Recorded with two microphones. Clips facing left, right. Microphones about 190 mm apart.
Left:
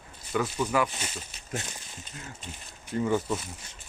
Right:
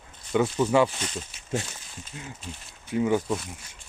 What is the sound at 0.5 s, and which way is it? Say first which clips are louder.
Speech: right 6 dB; 30° right (ahead or behind).